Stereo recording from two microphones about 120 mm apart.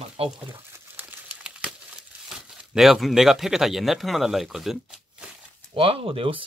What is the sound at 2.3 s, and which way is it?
Speech, 5° right (ahead or behind).